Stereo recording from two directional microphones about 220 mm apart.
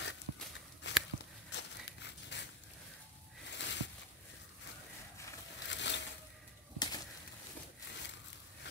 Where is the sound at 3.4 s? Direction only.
55° left (ahead or behind).